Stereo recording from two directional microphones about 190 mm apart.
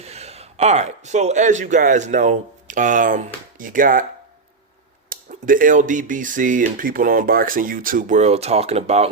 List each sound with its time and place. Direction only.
0.0 s speech: 35° right (ahead or behind)
5.0 s speech: 45° right (ahead or behind)